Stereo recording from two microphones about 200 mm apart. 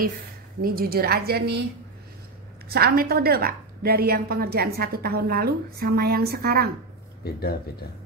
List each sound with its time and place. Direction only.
0.6 s a woman's voice: 50° right (ahead or behind)
2.7 s a woman's voice: 50° right (ahead or behind)
7.2 s speech: 50° left (ahead or behind)